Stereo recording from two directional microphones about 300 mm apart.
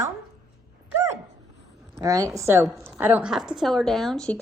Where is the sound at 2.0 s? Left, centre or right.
Centre.